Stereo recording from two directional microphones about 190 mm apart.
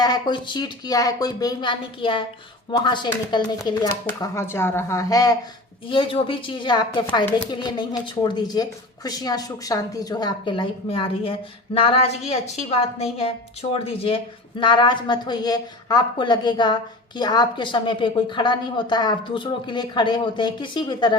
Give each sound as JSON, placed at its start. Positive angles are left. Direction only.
{"t": 0.0, "sound": "a woman's voice", "side_deg": 20}